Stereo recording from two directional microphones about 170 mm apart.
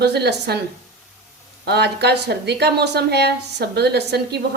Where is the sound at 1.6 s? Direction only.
75° right (ahead or behind).